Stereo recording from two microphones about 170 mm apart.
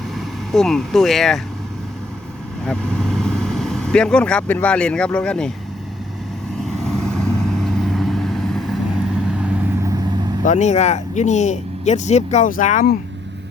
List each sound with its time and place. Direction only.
0.1 s speech: centre (ahead or behind)
2.6 s speech: 5° left (ahead or behind)
6.6 s vehicle: centre (ahead or behind)
10.4 s speech: 45° left (ahead or behind)